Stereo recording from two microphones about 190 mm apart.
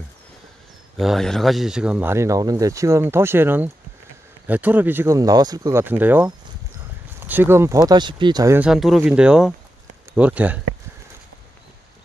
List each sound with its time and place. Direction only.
0.9 s speech: centre (ahead or behind); by 8.5 s 20° right (ahead or behind)
8.5 s speech: 5° right (ahead or behind)